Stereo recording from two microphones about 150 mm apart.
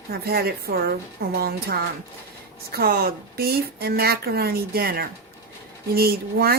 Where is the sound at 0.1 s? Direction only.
90° right.